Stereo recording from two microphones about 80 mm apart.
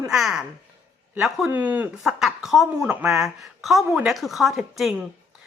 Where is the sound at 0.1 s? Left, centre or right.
Centre.